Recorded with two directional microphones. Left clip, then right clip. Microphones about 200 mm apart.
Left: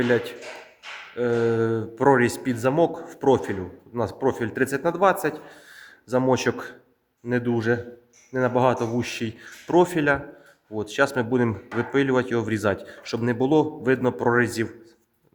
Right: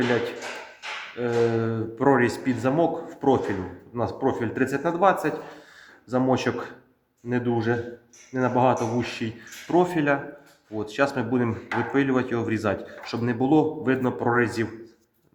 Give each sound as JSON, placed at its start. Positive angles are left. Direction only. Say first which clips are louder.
{"t": 1.1, "sound": "speech", "louder": "left 1 dB", "side_deg": 50}